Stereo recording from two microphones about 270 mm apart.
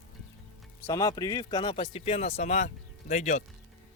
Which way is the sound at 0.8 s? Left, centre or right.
Centre.